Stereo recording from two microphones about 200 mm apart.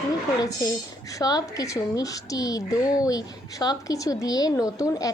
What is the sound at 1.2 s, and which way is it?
Speech, 20° left (ahead or behind).